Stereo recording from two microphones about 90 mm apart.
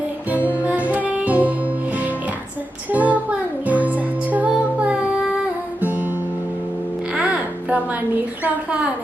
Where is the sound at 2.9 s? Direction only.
15° right (ahead or behind).